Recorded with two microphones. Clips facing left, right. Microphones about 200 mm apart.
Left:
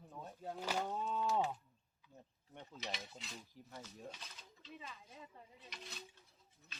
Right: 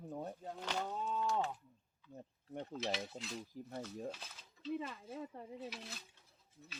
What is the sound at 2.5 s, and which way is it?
Speech, 60° right (ahead or behind).